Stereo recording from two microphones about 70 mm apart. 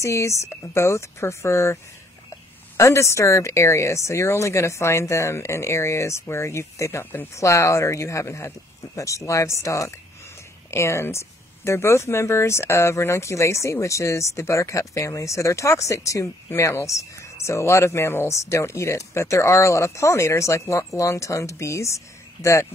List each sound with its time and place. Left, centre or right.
0.0 s speech: left
2.8 s speech: left
7.3 s speech: left